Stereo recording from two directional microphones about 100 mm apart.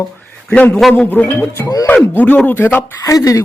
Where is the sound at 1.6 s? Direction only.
35° left (ahead or behind).